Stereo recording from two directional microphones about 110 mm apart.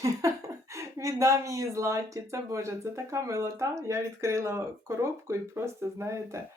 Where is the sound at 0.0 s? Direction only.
30° right (ahead or behind).